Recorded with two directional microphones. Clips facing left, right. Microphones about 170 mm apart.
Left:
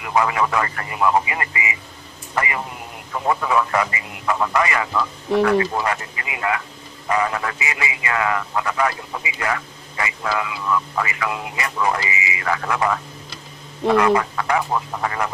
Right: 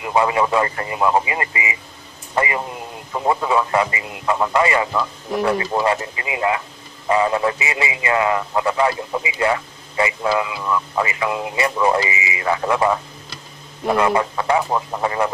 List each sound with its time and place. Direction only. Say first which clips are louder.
0.0 s speech: right 2 dB; 25° right (ahead or behind)